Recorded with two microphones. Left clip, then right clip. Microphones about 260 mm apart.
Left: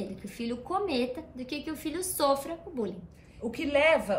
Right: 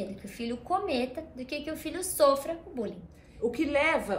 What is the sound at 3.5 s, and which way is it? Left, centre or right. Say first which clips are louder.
Speech: left 2 dB; centre.